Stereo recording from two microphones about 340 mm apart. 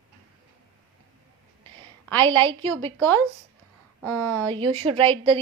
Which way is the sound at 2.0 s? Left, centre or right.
Centre.